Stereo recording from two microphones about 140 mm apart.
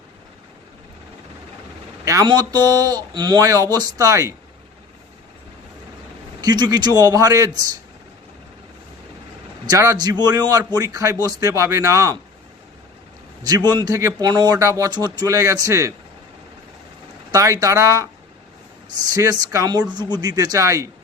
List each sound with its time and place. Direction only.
2.0 s speech: 25° right (ahead or behind)
6.4 s speech: 30° right (ahead or behind)
9.6 s speech: 25° right (ahead or behind)
13.4 s speech: 30° right (ahead or behind)
17.3 s speech: 25° right (ahead or behind)